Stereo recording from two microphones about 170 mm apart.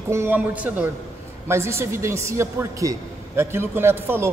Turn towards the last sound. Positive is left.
turn(degrees=-15)  # may be behind; listen again after turning